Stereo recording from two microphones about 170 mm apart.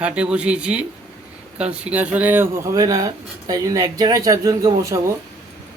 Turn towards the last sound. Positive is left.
turn(degrees=-20)  # may be behind; listen again after turning